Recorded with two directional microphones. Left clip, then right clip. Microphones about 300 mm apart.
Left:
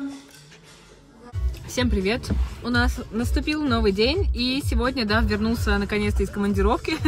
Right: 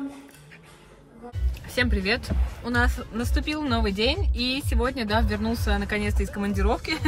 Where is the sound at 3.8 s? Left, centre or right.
Right.